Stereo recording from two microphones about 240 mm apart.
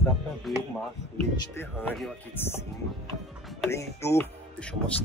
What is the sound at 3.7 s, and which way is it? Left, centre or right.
Speech, centre.